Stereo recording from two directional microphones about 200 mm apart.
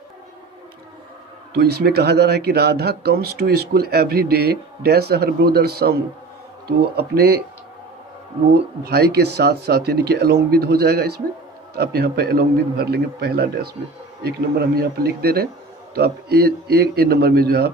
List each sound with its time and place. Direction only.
1.5 s speech: 55° right (ahead or behind)
8.8 s speech: 50° right (ahead or behind)